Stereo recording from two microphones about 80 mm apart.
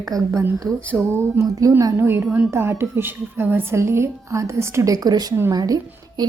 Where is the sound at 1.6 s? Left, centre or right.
Right.